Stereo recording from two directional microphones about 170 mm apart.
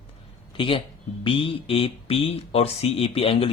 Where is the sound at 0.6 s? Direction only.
30° left (ahead or behind).